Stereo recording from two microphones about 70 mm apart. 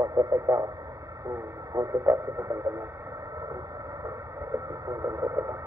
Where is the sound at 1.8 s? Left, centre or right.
Right.